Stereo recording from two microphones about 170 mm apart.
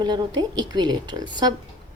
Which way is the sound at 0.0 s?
25° right (ahead or behind).